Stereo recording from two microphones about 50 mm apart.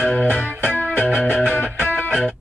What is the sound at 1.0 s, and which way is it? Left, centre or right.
Music, centre.